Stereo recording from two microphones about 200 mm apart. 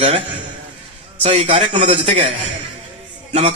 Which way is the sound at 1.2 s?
30° right (ahead or behind).